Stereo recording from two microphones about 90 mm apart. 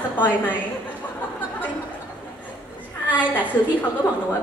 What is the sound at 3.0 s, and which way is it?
Speech, 20° left (ahead or behind).